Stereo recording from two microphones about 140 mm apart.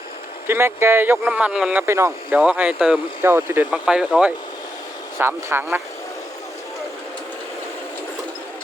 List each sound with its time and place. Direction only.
0.4 s speech: 15° right (ahead or behind)
1.9 s speech: 20° right (ahead or behind)
2.3 s speech: 10° right (ahead or behind)